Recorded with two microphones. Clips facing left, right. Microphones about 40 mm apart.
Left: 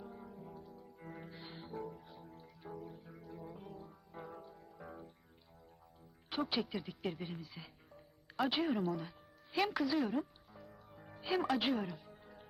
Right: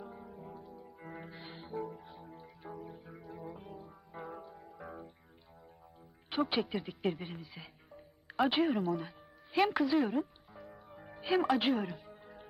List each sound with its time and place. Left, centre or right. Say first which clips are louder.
0.0 s music: right 3 dB; centre
6.3 s speech: right 5 dB; right
7.2 s music: right 1 dB; centre
8.5 s speech: right 4 dB; centre
9.0 s speech: right 3 dB; centre
10.5 s music: right 5 dB; right; by 11.9 s centre
11.9 s music: right 4 dB; centre